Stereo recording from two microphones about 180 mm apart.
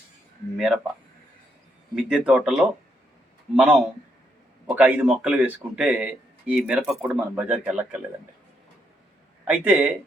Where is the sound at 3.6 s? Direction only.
5° right (ahead or behind).